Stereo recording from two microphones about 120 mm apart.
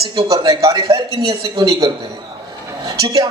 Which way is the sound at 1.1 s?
45° right (ahead or behind).